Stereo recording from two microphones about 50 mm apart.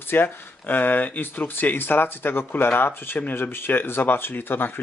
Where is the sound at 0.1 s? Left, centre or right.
Left.